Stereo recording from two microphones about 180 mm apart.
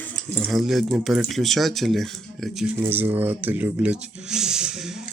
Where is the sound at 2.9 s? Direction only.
10° right (ahead or behind).